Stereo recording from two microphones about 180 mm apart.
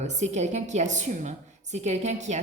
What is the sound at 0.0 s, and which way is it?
A woman's voice, 40° right (ahead or behind).